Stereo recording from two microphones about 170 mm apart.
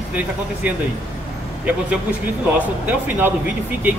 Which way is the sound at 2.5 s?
10° right (ahead or behind).